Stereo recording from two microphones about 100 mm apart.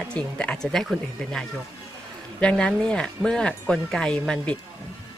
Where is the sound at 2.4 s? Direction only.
5° left (ahead or behind).